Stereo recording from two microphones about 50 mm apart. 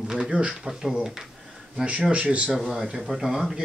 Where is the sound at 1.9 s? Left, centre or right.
Right.